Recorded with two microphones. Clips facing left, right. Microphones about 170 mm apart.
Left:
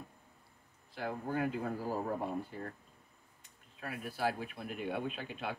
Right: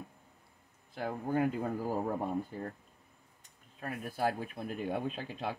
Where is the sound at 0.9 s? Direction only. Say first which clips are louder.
Right 4 dB; 45° right (ahead or behind).